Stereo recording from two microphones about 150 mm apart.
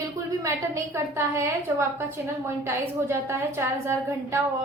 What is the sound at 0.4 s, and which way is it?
A woman's voice, 20° right (ahead or behind).